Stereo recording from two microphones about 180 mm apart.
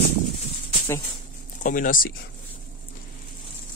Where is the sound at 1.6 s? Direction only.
50° left (ahead or behind).